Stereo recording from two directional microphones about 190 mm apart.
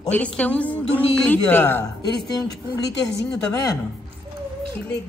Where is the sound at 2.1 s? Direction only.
20° left (ahead or behind).